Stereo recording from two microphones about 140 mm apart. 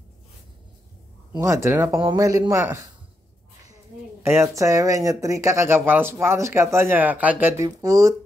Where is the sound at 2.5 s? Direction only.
20° right (ahead or behind).